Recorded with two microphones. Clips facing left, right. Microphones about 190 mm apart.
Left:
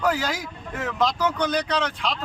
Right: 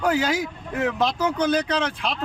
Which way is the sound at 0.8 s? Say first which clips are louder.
Right 1 dB; 25° right (ahead or behind).